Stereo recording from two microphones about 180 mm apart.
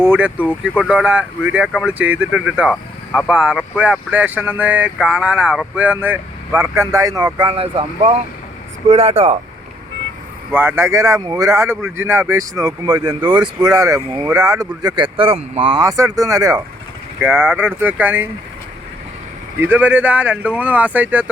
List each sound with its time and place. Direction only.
0.0 s speech: 10° right (ahead or behind); by 9.4 s 35° right (ahead or behind)
10.5 s speech: 10° right (ahead or behind)
19.5 s speech: 10° right (ahead or behind)